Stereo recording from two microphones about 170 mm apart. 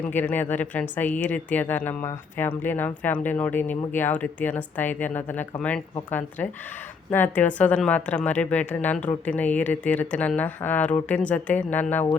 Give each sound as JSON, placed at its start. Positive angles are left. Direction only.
{"t": 0.1, "sound": "speech", "side_deg": 10}